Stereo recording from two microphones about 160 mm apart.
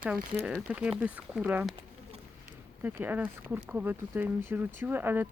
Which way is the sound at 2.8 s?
10° right (ahead or behind).